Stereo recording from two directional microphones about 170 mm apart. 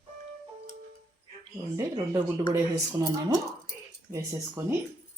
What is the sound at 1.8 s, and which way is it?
Speech, 20° right (ahead or behind).